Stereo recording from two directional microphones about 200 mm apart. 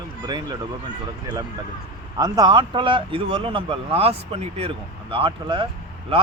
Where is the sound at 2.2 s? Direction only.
20° right (ahead or behind).